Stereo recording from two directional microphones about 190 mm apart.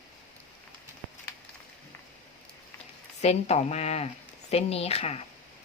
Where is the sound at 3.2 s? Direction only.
35° left (ahead or behind).